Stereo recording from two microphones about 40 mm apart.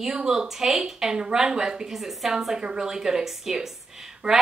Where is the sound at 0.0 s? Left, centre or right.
Centre.